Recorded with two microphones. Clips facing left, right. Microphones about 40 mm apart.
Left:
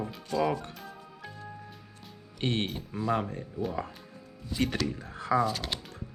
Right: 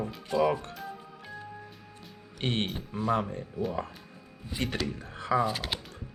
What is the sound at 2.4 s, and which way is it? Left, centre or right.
Speech, right.